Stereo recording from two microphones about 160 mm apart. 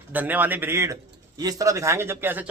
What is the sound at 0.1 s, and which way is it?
A man's voice, 10° right (ahead or behind).